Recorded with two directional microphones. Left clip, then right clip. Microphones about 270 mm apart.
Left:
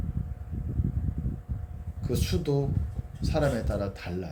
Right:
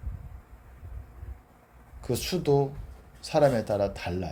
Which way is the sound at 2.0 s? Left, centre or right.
Right.